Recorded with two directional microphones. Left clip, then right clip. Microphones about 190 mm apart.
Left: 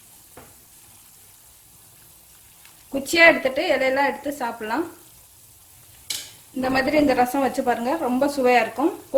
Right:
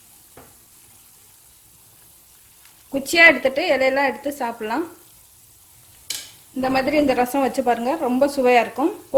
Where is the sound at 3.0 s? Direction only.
40° right (ahead or behind).